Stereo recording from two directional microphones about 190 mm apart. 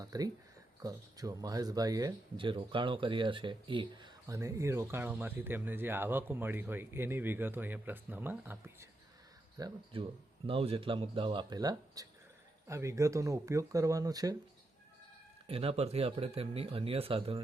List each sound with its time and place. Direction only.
0.0 s speech: 20° right (ahead or behind)
9.6 s a man's voice: 25° right (ahead or behind)
15.4 s speech: 30° right (ahead or behind)